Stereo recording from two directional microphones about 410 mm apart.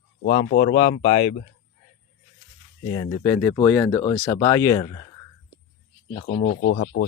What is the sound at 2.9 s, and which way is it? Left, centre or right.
Speech, centre.